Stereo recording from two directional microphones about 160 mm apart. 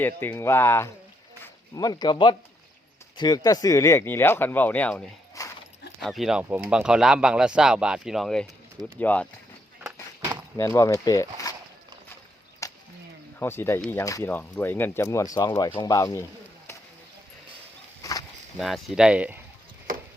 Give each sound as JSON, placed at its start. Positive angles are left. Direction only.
{"t": 0.0, "sound": "speech", "side_deg": 10}
{"t": 5.4, "sound": "dog", "side_deg": 20}
{"t": 6.0, "sound": "speech", "side_deg": 0}
{"t": 10.6, "sound": "speech", "side_deg": 20}
{"t": 12.6, "sound": "a sound", "side_deg": 20}
{"t": 13.4, "sound": "speech", "side_deg": 15}
{"t": 18.5, "sound": "speech", "side_deg": 0}